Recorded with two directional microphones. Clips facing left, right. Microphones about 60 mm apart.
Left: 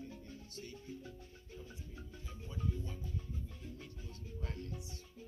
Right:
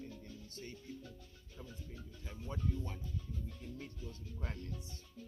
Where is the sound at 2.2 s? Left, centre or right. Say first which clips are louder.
Right 2 dB; right.